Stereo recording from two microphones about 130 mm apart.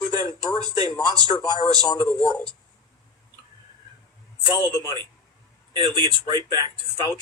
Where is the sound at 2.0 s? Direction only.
10° left (ahead or behind).